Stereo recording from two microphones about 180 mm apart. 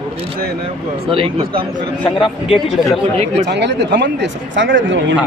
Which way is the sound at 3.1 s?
35° right (ahead or behind).